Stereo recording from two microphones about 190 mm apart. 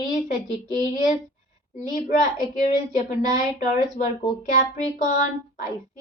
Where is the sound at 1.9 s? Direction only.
45° left (ahead or behind).